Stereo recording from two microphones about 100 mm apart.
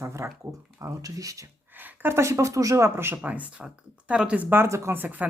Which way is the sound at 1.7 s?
20° right (ahead or behind).